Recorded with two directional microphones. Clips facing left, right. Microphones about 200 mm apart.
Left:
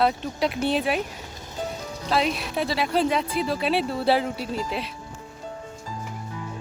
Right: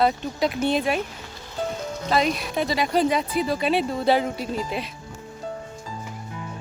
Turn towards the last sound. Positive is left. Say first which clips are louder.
# right 1 dB
turn(degrees=-45)  # may be behind; listen again after turning